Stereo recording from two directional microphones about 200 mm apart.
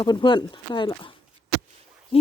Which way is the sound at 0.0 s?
20° left (ahead or behind).